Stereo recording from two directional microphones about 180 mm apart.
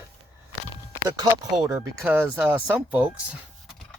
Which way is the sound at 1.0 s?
20° right (ahead or behind).